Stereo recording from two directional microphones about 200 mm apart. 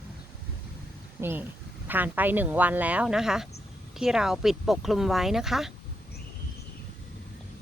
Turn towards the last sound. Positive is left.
turn(degrees=0)  # may be behind; listen again after turning